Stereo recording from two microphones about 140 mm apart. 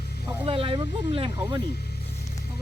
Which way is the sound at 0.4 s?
40° right (ahead or behind).